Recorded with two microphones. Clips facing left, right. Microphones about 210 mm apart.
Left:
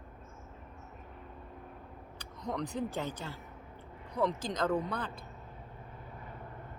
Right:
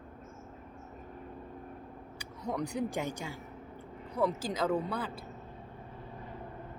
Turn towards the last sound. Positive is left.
turn(degrees=-5)  # may be behind; listen again after turning